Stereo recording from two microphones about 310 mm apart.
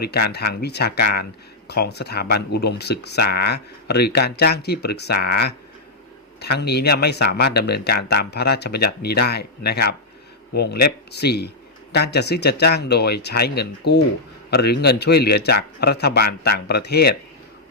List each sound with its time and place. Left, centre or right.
0.0 s speech: left